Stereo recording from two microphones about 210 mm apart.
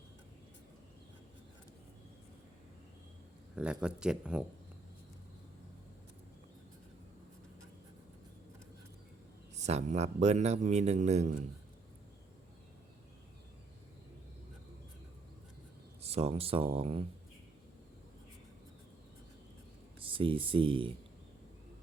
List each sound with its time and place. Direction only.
3.5 s speech: 5° right (ahead or behind)
9.6 s a man's voice: 30° right (ahead or behind)
16.0 s speech: 30° right (ahead or behind)
20.0 s speech: 25° right (ahead or behind)